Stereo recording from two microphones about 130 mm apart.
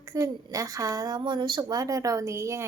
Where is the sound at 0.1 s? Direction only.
25° right (ahead or behind).